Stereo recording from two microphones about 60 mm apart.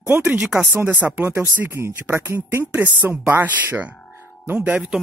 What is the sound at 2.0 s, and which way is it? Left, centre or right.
Speech, right.